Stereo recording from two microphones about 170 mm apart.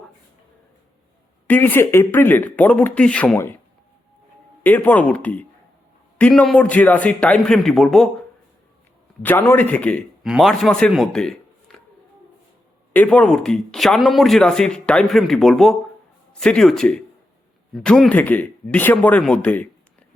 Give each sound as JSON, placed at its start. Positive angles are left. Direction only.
{"t": 1.5, "sound": "speech", "side_deg": 10}
{"t": 4.6, "sound": "a man's voice", "side_deg": 10}
{"t": 9.2, "sound": "a man's voice", "side_deg": 10}
{"t": 12.9, "sound": "a man's voice", "side_deg": 10}